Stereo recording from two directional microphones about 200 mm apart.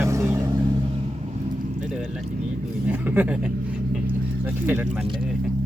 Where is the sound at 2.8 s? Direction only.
10° right (ahead or behind).